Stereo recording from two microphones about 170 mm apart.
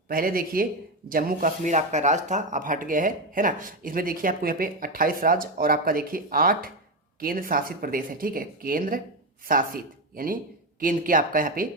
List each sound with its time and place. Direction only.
0.1 s speech: 60° right (ahead or behind)